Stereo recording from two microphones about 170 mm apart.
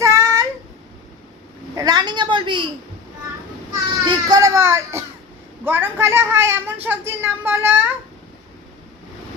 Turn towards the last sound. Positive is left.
turn(degrees=-15)  # may be behind; listen again after turning